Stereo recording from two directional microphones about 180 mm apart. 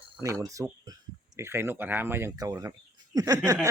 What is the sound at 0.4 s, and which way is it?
Speech, 20° right (ahead or behind).